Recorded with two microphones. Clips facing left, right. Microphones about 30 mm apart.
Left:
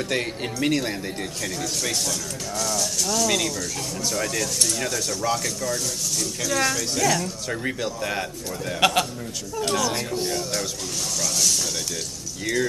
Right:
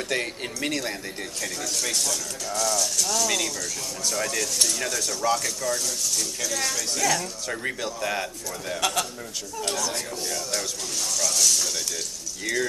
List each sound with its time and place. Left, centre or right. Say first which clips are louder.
0.1 s speech: left 2 dB; centre
8.7 s a man's voice: left 6 dB; left
9.6 s speech: left 5 dB; centre
10.1 s a man's voice: left 5 dB; left
11.1 s speech: even; centre